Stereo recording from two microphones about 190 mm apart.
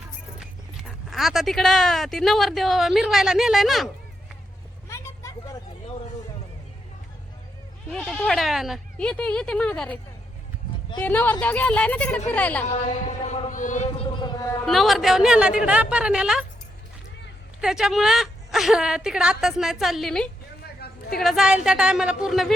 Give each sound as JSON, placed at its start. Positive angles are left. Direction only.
{"t": 0.3, "sound": "speech", "side_deg": -5}
{"t": 4.9, "sound": "vehicle", "side_deg": 15}
{"t": 7.9, "sound": "a woman's voice", "side_deg": 5}
{"t": 11.0, "sound": "speech", "side_deg": 10}
{"t": 12.6, "sound": "speech", "side_deg": 35}
{"t": 14.2, "sound": "a woman's voice", "side_deg": 20}
{"t": 14.6, "sound": "a woman's voice", "side_deg": 0}
{"t": 17.6, "sound": "a woman's voice", "side_deg": -5}
{"t": 20.7, "sound": "a sound", "side_deg": 55}
{"t": 21.2, "sound": "a woman's voice", "side_deg": 0}